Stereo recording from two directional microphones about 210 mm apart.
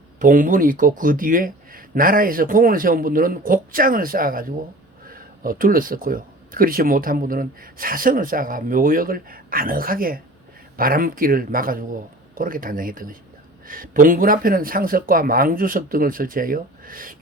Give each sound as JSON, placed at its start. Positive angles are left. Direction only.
{"t": 0.2, "sound": "speech", "side_deg": -40}